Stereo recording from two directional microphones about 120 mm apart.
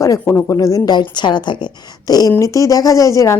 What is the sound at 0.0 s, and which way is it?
A woman's voice, 25° left (ahead or behind).